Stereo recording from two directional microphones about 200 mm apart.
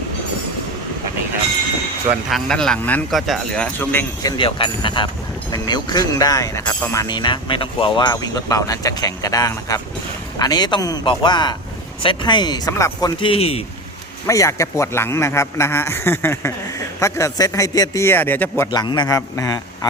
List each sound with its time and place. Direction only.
2.3 s a man's voice: 5° left (ahead or behind); by 13.7 s 30° left (ahead or behind)
14.3 s a man's voice: 15° left (ahead or behind)